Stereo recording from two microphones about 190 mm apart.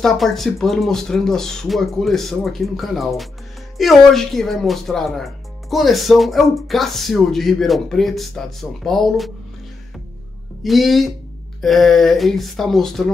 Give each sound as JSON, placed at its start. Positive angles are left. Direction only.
{"t": 0.0, "sound": "speech", "side_deg": 0}
{"t": 10.6, "sound": "speech", "side_deg": 0}